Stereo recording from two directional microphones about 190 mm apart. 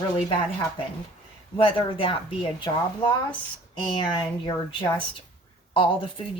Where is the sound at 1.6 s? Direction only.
30° left (ahead or behind).